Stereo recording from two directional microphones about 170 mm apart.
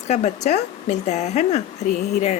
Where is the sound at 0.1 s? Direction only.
40° left (ahead or behind).